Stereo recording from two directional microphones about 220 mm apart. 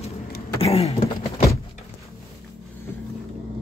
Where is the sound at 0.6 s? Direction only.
25° left (ahead or behind).